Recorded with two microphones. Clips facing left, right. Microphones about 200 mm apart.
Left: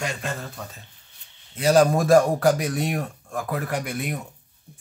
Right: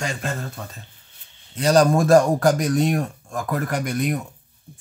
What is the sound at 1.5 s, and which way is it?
Speech, 5° left (ahead or behind).